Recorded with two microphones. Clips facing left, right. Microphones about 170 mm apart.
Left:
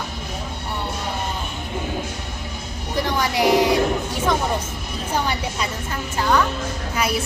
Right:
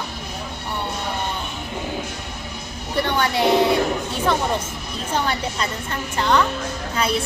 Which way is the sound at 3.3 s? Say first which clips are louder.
Left 1 dB; 25° right (ahead or behind).